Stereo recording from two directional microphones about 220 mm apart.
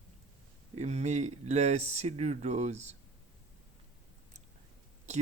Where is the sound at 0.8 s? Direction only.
30° right (ahead or behind).